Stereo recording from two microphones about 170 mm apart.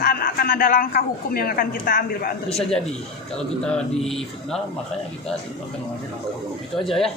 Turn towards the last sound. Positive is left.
turn(degrees=0)  # may be behind; listen again after turning